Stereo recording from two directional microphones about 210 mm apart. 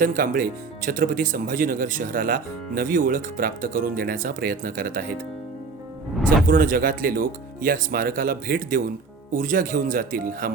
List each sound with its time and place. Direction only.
0.0 s speech: 40° right (ahead or behind)
6.5 s speech: 40° right (ahead or behind)